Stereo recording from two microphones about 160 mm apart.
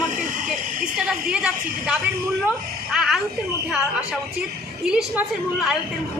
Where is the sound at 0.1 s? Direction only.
60° right (ahead or behind).